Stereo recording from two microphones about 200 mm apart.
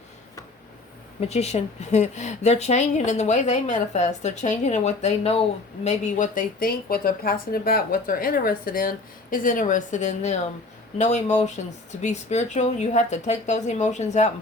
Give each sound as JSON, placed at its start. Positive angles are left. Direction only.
{"t": 1.2, "sound": "speech", "side_deg": 35}